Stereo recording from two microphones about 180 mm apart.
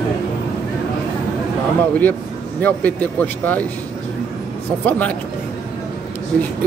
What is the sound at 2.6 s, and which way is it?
Speech, 10° left (ahead or behind).